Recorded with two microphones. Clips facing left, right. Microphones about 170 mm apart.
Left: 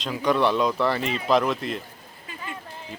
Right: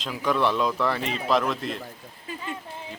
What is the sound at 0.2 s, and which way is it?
Speech, centre (ahead or behind).